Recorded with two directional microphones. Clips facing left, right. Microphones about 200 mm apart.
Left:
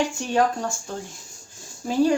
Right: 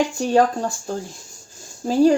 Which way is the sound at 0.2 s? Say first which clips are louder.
Right 5 dB; 35° right (ahead or behind).